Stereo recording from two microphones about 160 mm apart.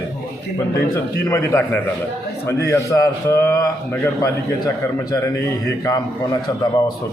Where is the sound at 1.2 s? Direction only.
20° left (ahead or behind).